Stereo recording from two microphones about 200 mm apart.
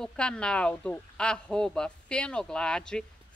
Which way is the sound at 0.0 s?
5° left (ahead or behind).